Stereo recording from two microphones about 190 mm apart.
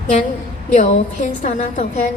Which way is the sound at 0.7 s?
40° left (ahead or behind).